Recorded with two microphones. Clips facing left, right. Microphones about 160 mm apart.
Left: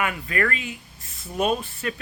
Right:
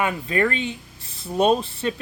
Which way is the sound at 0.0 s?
25° right (ahead or behind).